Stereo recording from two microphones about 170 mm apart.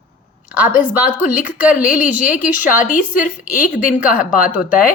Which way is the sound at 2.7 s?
50° left (ahead or behind).